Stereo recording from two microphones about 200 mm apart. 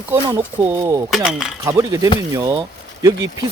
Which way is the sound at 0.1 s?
15° right (ahead or behind).